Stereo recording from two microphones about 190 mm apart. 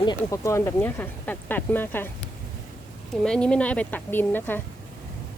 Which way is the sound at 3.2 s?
5° left (ahead or behind).